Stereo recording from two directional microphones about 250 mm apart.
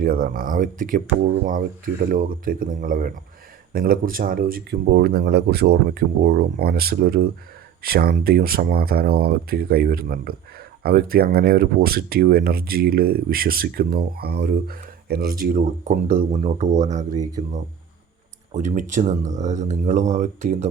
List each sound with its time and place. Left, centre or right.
0.0 s speech: right
15.5 s speech: right
18.5 s speech: right